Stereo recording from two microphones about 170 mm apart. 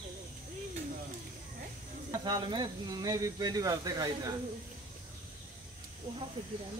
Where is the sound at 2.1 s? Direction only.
25° right (ahead or behind).